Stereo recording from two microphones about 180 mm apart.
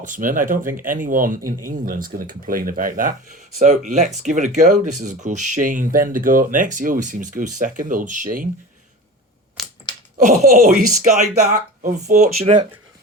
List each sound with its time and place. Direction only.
0.0 s speech: 45° right (ahead or behind)
9.6 s a sound: centre (ahead or behind)
10.2 s speech: 45° right (ahead or behind)